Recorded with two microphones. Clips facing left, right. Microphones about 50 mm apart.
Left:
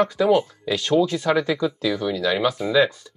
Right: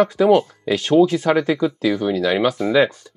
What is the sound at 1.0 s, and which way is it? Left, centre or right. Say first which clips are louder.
Speech: right 4 dB; right.